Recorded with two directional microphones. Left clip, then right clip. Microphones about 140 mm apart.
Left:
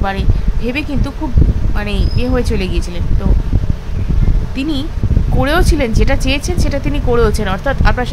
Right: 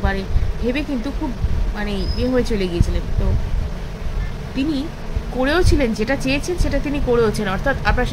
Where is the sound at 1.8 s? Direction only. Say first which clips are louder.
Left 2 dB; 50° left (ahead or behind).